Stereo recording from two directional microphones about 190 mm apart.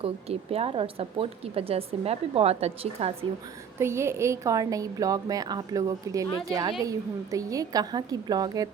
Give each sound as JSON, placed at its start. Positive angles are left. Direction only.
{"t": 0.0, "sound": "speech", "side_deg": -30}
{"t": 3.8, "sound": "a woman's voice", "side_deg": -15}